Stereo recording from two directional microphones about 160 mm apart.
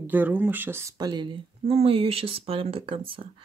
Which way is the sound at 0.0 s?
10° right (ahead or behind).